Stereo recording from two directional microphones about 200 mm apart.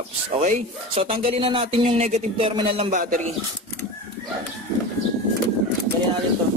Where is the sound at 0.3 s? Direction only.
30° right (ahead or behind).